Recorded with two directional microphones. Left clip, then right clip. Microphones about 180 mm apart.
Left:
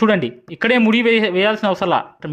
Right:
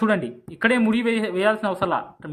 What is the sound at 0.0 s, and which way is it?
Speech, 35° left (ahead or behind).